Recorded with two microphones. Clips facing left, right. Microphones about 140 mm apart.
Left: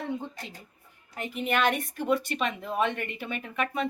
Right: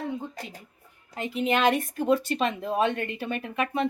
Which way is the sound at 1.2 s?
25° right (ahead or behind).